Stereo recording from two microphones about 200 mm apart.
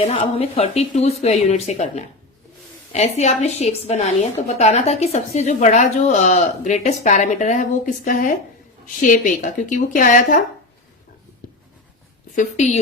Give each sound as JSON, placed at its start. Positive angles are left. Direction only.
{"t": 0.0, "sound": "a woman's voice", "side_deg": 30}
{"t": 12.3, "sound": "a woman's voice", "side_deg": 35}